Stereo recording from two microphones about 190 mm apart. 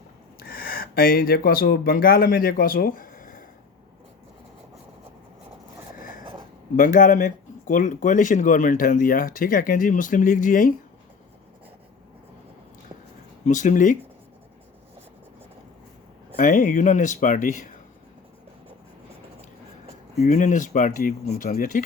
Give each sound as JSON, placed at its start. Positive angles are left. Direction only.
{"t": 0.4, "sound": "speech", "side_deg": 50}
{"t": 6.0, "sound": "a sound", "side_deg": 45}
{"t": 6.7, "sound": "speech", "side_deg": 45}
{"t": 13.4, "sound": "speech", "side_deg": 40}
{"t": 16.4, "sound": "speech", "side_deg": 45}
{"t": 20.2, "sound": "speech", "side_deg": 40}